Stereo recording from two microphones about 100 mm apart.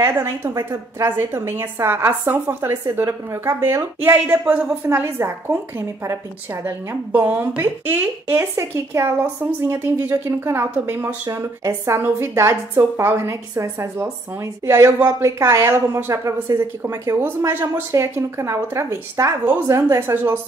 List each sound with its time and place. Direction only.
0.0 s a woman's voice: 25° right (ahead or behind)
8.7 s a woman's voice: 30° right (ahead or behind)
11.3 s a woman's voice: 30° right (ahead or behind)